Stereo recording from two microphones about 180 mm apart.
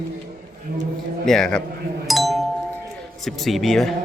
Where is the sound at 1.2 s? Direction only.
5° left (ahead or behind).